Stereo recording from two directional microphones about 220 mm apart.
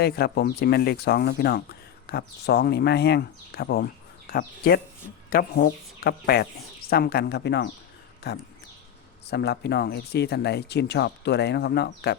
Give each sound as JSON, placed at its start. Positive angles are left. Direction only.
{"t": 0.0, "sound": "speech", "side_deg": 45}
{"t": 9.3, "sound": "speech", "side_deg": 50}